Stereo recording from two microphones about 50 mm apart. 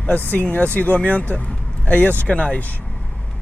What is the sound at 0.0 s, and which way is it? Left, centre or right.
Speech, left.